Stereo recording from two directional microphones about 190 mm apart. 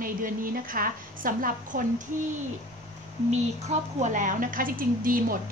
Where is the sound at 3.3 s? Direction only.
40° right (ahead or behind).